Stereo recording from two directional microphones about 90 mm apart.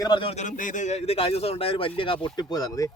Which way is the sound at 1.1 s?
90° left.